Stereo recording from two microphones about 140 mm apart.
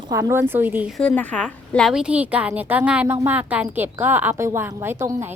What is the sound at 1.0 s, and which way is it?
A woman's voice, 10° left (ahead or behind).